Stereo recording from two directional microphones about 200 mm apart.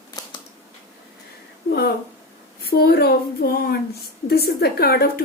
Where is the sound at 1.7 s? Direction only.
55° left (ahead or behind).